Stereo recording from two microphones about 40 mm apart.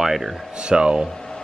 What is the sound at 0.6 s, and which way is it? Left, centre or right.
Speech, right.